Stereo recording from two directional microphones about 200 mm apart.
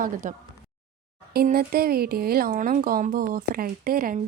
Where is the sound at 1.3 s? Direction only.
50° right (ahead or behind).